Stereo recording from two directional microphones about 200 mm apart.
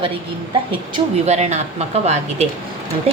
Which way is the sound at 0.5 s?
30° right (ahead or behind).